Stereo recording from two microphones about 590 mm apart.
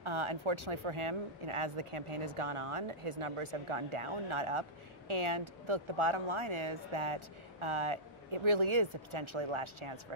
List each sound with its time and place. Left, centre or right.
0.0 s speech: right